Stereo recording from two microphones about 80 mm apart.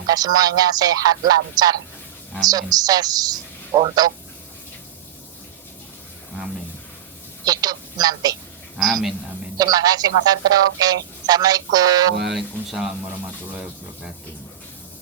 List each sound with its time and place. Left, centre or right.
0.1 s speech: right
3.7 s speech: right
7.4 s a woman's voice: right
8.8 s speech: centre
9.6 s speech: right
12.3 s speech: centre
13.1 s a sound: centre